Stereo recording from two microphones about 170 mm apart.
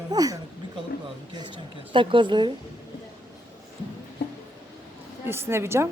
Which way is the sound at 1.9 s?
30° right (ahead or behind).